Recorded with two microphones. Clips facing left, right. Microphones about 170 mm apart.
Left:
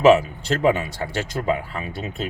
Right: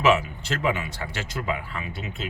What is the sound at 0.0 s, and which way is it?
Speech, 35° left (ahead or behind).